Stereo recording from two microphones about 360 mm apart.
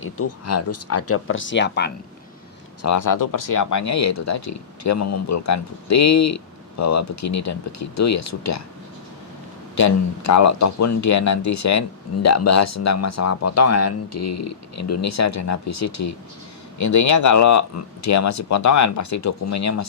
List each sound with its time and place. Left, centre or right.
0.0 s speech: left
2.8 s speech: left
9.7 s speech: left